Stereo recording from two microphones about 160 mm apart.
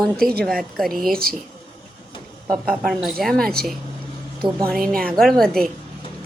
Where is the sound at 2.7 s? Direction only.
Centre (ahead or behind).